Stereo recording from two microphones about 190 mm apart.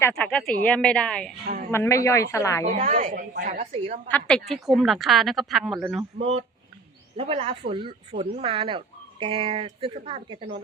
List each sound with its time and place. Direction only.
0.0 s speech: 5° left (ahead or behind)
2.8 s a woman's voice: 45° right (ahead or behind)
3.6 s a woman's voice: 35° right (ahead or behind)
4.1 s speech: 5° left (ahead or behind)
6.1 s a woman's voice: 30° right (ahead or behind)